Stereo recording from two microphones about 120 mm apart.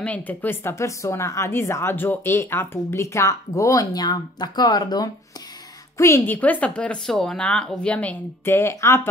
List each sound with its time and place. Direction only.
0.0 s speech: 15° left (ahead or behind)